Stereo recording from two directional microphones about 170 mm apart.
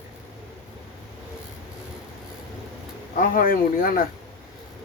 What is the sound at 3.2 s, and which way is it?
Speech, 55° left (ahead or behind).